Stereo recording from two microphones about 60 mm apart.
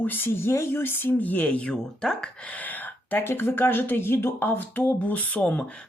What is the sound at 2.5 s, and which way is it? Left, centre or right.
Speech, left.